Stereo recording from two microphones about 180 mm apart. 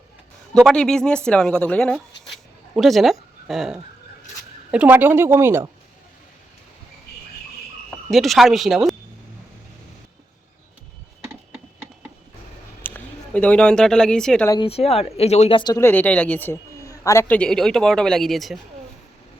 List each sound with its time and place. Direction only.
0.5 s a woman's voice: 5° left (ahead or behind); by 5.7 s 15° right (ahead or behind)
8.1 s speech: centre (ahead or behind)
12.8 s speech: 10° left (ahead or behind)
14.6 s speech: 35° left (ahead or behind); by 18.6 s centre (ahead or behind)